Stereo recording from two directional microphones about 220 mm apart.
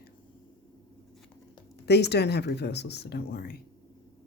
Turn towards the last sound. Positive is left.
turn(degrees=45)  # may be behind; listen again after turning